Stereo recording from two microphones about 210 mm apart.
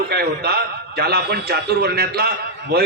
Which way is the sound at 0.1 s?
50° right (ahead or behind).